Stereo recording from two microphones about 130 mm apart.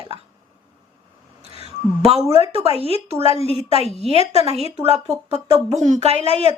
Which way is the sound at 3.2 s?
45° left (ahead or behind).